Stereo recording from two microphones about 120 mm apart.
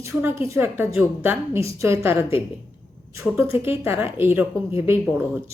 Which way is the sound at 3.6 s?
20° right (ahead or behind).